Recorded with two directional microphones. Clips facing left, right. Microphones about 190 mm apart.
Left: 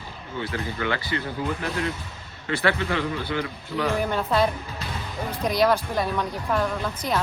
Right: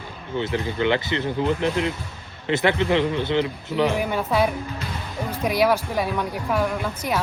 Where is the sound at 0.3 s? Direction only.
20° right (ahead or behind).